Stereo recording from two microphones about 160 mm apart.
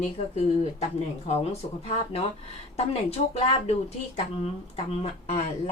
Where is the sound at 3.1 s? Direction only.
40° left (ahead or behind).